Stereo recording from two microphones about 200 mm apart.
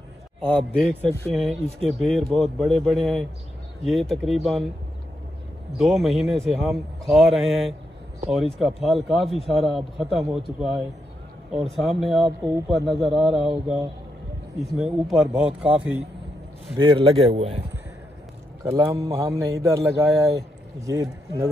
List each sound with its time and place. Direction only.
0.4 s speech: 5° left (ahead or behind)
5.8 s speech: centre (ahead or behind)
14.9 s speech: centre (ahead or behind)
16.7 s a man's voice: 25° right (ahead or behind)
18.6 s a man's voice: 15° right (ahead or behind)